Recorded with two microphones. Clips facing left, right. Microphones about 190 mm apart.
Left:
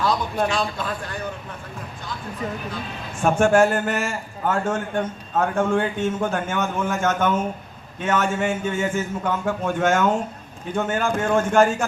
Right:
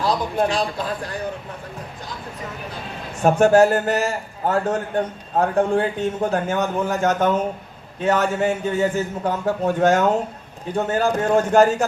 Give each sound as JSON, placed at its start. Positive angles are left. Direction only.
{"t": 0.0, "sound": "a man's voice", "side_deg": -35}
{"t": 3.2, "sound": "a man's voice", "side_deg": -40}